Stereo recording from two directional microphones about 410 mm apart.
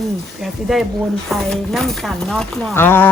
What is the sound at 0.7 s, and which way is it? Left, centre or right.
Speech, centre.